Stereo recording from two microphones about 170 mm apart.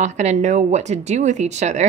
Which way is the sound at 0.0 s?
45° right (ahead or behind).